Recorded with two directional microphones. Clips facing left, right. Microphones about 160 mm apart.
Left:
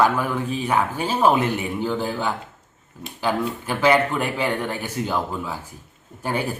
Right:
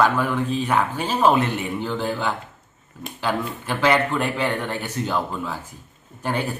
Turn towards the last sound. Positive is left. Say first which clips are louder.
# even
turn(degrees=10)  # may be behind; listen again after turning